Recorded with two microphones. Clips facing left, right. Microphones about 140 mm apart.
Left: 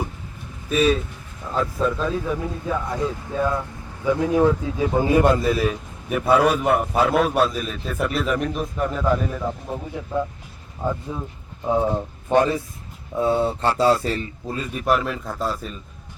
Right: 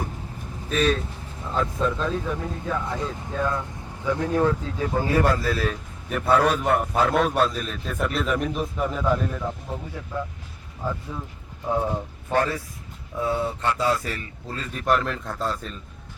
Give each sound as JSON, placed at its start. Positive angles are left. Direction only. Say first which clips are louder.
{"t": 0.7, "sound": "speech", "louder": "left 4 dB", "side_deg": 5}
{"t": 9.6, "sound": "speech", "louder": "left 4 dB", "side_deg": 15}
{"t": 14.4, "sound": "speech", "louder": "left 1 dB", "side_deg": 15}